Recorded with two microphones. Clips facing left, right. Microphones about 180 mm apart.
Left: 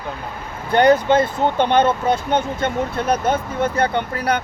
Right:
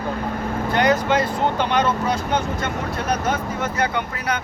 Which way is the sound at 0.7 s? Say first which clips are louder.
Left 6 dB; 30° left (ahead or behind).